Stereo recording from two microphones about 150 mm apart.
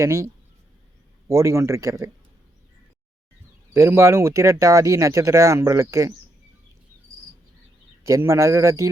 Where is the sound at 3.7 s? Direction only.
15° right (ahead or behind).